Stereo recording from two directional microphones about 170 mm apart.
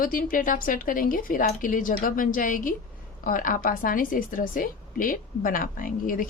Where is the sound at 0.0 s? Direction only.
55° left (ahead or behind).